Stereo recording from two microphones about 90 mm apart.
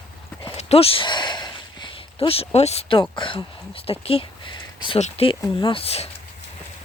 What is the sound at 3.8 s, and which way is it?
Speech, 90° left.